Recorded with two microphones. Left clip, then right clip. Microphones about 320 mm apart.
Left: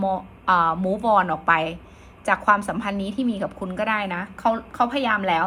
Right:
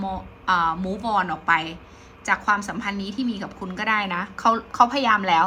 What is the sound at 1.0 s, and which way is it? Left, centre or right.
A woman's voice, centre.